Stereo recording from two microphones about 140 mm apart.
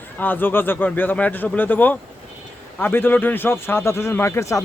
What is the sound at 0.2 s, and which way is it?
Speech, 15° left (ahead or behind).